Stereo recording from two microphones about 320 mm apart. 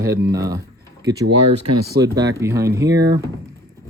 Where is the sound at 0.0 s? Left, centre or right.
Centre.